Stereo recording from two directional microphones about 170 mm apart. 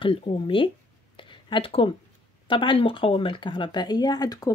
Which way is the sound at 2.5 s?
30° left (ahead or behind).